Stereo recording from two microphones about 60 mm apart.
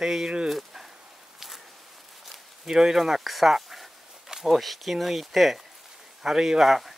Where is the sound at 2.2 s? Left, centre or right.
Centre.